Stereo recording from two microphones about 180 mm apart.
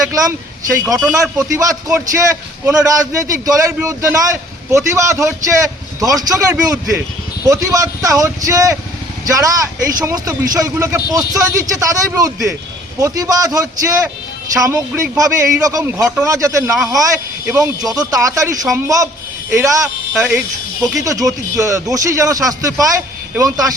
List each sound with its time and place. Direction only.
0.1 s a man's voice: 20° right (ahead or behind)